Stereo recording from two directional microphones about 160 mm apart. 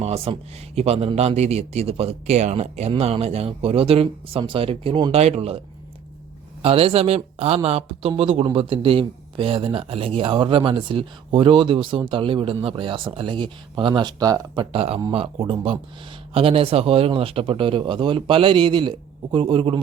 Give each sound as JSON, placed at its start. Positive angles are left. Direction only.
{"t": 0.0, "sound": "speech", "side_deg": -40}
{"t": 6.6, "sound": "speech", "side_deg": -35}